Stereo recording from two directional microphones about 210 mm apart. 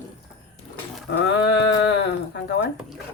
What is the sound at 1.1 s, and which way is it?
Speech, 55° left (ahead or behind).